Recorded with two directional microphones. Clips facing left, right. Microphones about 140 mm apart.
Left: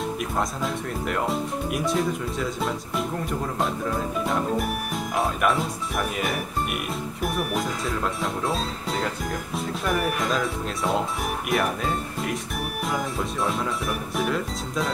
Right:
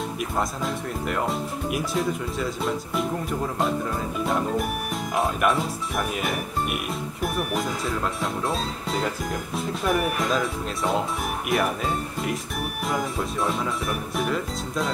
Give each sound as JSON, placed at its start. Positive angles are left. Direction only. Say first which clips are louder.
{"t": 0.2, "sound": "speech", "louder": "even", "side_deg": 0}